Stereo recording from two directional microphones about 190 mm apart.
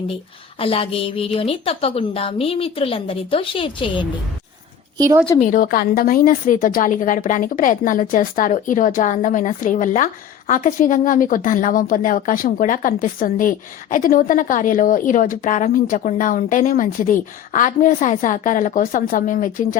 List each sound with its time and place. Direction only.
0.6 s a woman's voice: 30° left (ahead or behind)
4.9 s a woman's voice: 15° right (ahead or behind)
5.4 s a woman's voice: 45° left (ahead or behind)